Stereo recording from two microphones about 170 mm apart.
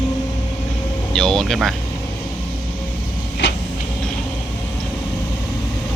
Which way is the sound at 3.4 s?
90° left.